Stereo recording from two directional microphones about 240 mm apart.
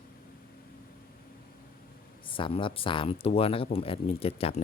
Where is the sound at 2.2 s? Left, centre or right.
Left.